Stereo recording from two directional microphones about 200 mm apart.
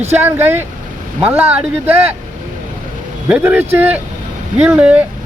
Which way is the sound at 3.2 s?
5° right (ahead or behind).